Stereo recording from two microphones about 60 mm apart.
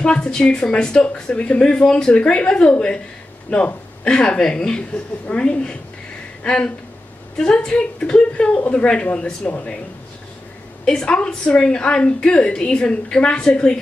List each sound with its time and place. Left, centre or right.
0.0 s a woman's voice: centre
10.9 s a woman's voice: centre